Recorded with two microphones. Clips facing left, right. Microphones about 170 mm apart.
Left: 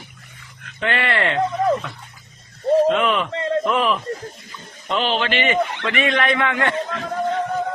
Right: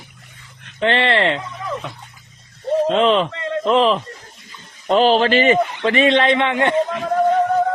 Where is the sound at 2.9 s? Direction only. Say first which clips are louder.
Right 4 dB; 30° right (ahead or behind).